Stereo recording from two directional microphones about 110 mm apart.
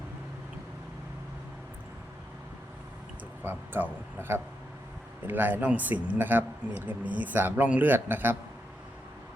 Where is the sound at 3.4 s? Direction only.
20° right (ahead or behind).